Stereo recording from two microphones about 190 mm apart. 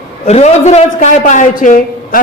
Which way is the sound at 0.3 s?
35° left (ahead or behind).